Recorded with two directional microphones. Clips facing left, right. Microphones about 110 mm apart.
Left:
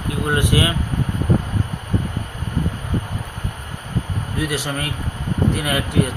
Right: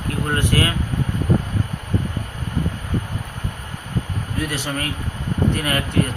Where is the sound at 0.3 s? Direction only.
15° left (ahead or behind).